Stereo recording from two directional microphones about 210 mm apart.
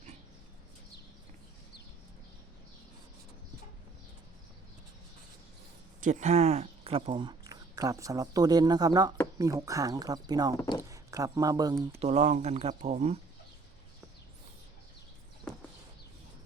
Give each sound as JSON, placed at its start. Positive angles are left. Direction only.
{"t": 6.0, "sound": "speech", "side_deg": -35}
{"t": 10.6, "sound": "speech", "side_deg": 15}
{"t": 10.8, "sound": "speech", "side_deg": -15}
{"t": 11.9, "sound": "speech", "side_deg": -30}